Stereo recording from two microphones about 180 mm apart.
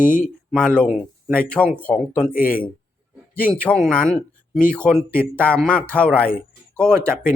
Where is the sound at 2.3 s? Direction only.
50° left (ahead or behind).